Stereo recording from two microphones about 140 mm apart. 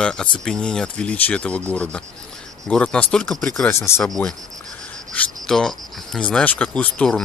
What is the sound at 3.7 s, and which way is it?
Speech, 20° left (ahead or behind).